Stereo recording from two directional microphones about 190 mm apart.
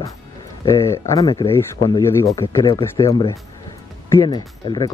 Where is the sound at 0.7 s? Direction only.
15° left (ahead or behind).